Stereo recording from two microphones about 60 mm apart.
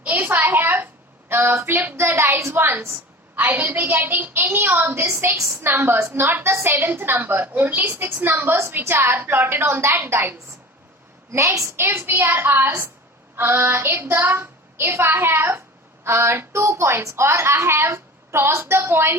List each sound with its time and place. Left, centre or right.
0.0 s a woman's voice: right
0.4 s a sound: right
1.3 s a woman's voice: right
2.0 s a woman's voice: right
11.3 s a woman's voice: right